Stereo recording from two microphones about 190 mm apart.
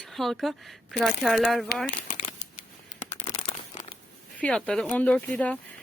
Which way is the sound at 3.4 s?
25° left (ahead or behind).